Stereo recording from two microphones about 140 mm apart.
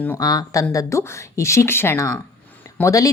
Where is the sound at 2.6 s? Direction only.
20° left (ahead or behind).